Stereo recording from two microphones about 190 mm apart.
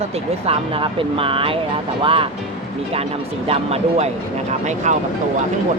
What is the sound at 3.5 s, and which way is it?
Speech, 35° right (ahead or behind).